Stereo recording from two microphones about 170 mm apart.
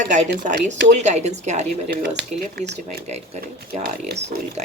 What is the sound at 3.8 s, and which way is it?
Speech, 45° right (ahead or behind).